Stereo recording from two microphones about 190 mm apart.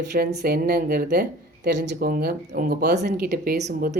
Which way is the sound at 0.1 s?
55° right (ahead or behind).